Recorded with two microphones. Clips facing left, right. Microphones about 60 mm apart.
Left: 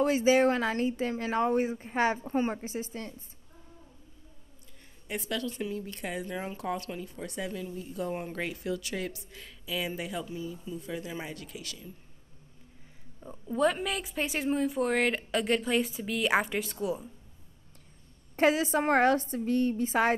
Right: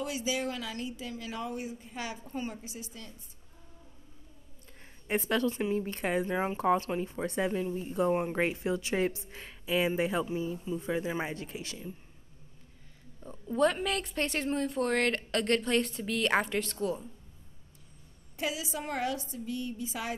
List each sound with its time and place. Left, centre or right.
0.0 s speech: left
5.0 s a woman's voice: right
8.1 s a woman's voice: right
13.2 s speech: centre
18.3 s a woman's voice: left